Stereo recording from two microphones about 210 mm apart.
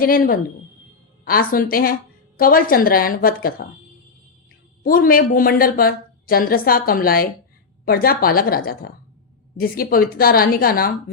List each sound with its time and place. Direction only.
0.0 s a woman's voice: 45° left (ahead or behind)
4.8 s a woman's voice: 45° left (ahead or behind)